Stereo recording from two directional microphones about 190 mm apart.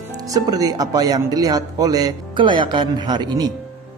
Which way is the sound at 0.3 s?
20° right (ahead or behind).